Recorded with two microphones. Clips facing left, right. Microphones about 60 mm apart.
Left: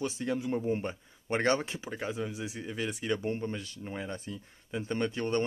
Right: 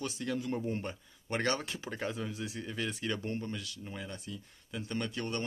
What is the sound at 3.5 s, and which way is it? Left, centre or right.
Speech, left.